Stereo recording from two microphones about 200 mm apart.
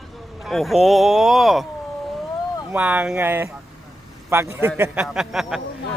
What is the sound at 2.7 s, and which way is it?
A man's voice, 5° right (ahead or behind).